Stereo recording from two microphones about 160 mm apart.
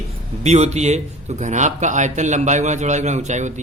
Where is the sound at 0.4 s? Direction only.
45° right (ahead or behind).